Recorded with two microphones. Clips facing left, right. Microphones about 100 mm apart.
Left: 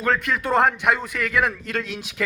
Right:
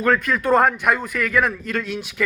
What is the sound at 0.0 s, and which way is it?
A man's voice, 25° left (ahead or behind).